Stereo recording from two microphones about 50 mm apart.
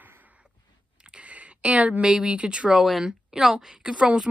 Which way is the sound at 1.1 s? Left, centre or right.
Right.